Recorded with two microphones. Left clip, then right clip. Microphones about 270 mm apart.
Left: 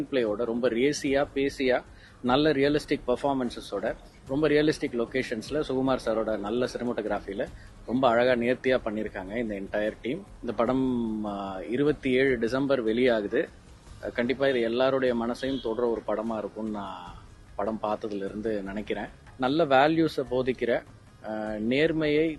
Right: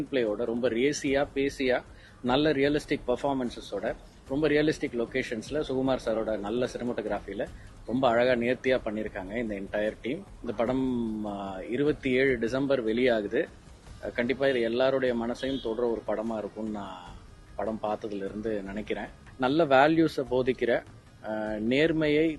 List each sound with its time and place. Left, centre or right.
0.1 s speech: left
19.4 s speech: centre